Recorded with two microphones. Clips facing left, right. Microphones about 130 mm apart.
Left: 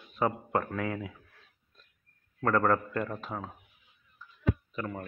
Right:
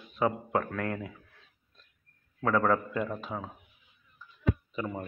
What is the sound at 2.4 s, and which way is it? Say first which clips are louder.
Speech: even; centre (ahead or behind).